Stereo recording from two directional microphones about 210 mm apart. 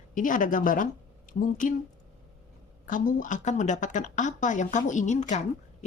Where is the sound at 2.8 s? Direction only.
40° left (ahead or behind).